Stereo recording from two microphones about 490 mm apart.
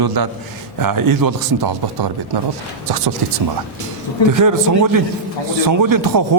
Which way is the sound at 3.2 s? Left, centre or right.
Right.